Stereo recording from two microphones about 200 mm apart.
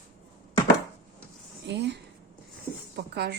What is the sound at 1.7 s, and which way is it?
Speech, 60° right (ahead or behind).